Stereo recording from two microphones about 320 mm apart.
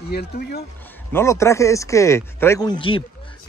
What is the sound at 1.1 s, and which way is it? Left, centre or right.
Speech, centre.